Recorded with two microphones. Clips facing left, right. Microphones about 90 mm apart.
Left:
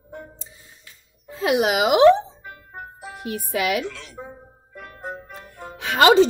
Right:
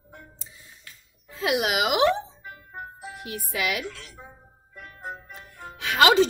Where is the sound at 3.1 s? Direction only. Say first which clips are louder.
Left 8 dB; 35° left (ahead or behind).